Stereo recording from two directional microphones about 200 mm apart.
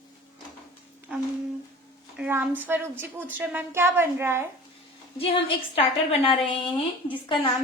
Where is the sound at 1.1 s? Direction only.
5° right (ahead or behind).